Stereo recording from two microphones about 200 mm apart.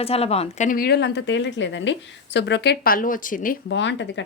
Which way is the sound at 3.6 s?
65° left (ahead or behind).